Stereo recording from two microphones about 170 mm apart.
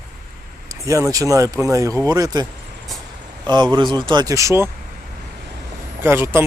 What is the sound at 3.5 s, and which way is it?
Speech, 25° right (ahead or behind).